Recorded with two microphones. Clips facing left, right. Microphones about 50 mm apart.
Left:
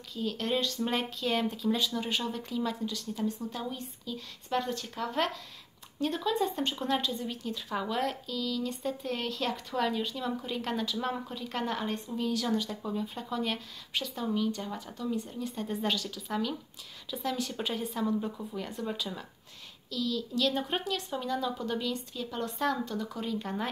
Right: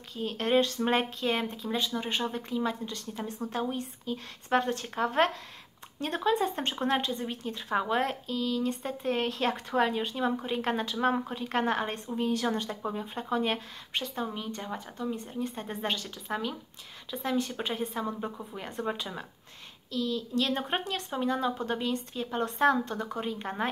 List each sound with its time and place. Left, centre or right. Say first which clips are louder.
0.1 s speech: right 4 dB; right
3.3 s speech: right 5 dB; right